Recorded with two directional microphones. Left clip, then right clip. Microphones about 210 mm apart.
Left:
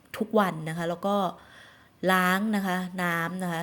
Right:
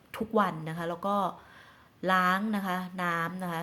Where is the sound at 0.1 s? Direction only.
20° left (ahead or behind).